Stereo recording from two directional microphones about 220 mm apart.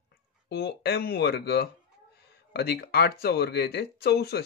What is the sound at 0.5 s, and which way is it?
Speech, 50° left (ahead or behind).